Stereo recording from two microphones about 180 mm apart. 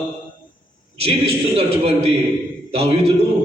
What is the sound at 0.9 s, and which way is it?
A man's voice, 35° right (ahead or behind).